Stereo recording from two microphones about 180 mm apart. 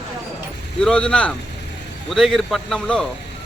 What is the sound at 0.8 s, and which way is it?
A man's voice, 5° left (ahead or behind).